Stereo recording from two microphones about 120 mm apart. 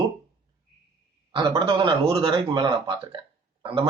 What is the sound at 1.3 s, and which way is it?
A man's voice, 45° right (ahead or behind).